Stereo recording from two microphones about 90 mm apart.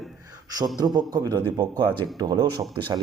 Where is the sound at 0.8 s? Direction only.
50° right (ahead or behind).